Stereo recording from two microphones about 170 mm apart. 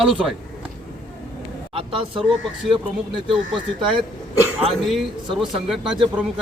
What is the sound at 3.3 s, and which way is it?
Speech, 30° right (ahead or behind).